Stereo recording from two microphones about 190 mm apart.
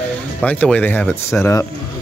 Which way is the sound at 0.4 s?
5° left (ahead or behind).